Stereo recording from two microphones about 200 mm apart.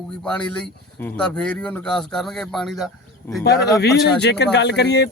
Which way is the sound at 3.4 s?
55° left (ahead or behind).